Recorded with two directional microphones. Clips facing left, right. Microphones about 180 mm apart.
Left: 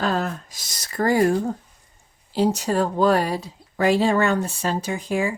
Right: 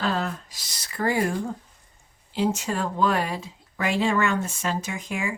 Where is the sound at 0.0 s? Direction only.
45° left (ahead or behind).